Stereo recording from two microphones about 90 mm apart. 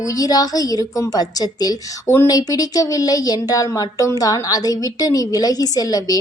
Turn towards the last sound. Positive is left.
turn(degrees=45)  # may be behind; listen again after turning